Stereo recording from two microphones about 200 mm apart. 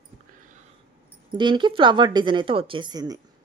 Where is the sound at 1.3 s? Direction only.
25° right (ahead or behind).